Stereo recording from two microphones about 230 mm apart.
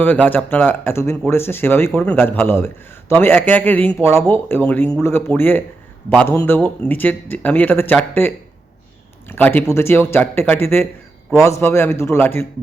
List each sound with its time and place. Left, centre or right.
0.3 s a man's voice: centre
9.3 s a man's voice: centre